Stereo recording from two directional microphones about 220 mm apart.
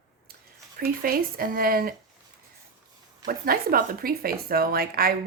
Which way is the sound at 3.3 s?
40° right (ahead or behind).